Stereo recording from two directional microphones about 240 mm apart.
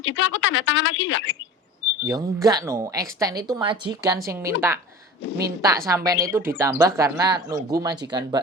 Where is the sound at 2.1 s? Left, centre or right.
Centre.